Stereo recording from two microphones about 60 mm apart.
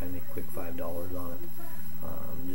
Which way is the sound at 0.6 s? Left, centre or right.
Left.